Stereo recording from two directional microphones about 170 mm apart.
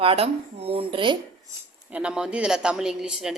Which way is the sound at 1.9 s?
5° right (ahead or behind).